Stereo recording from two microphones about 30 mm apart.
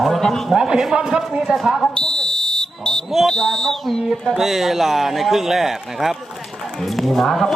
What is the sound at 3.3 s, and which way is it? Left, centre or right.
Speech, centre.